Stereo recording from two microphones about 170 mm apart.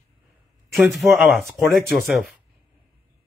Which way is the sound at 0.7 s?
Centre (ahead or behind).